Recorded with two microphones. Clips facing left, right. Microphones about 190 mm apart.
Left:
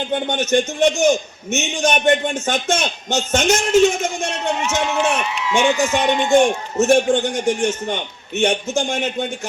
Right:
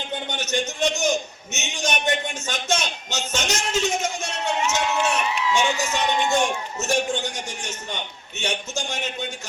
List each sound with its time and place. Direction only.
0.3 s a man's voice: 55° left (ahead or behind)